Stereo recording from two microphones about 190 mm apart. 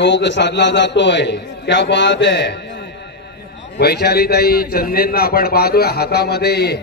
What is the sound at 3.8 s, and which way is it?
A man's voice, 60° left (ahead or behind).